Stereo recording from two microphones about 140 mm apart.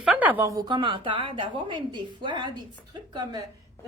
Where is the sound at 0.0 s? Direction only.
10° right (ahead or behind).